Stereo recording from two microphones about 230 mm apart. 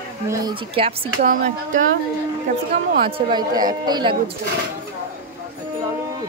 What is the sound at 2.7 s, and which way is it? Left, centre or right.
Speech, right.